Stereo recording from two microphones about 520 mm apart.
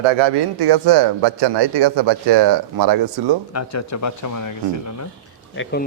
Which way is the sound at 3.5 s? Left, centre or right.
Left.